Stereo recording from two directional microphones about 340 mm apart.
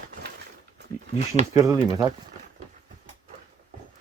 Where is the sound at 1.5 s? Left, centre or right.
Centre.